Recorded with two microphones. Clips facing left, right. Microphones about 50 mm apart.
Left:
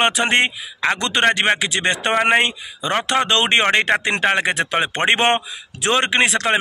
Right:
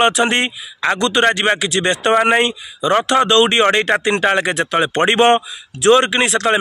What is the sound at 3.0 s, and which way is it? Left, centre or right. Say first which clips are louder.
A man's voice: right 3 dB; left.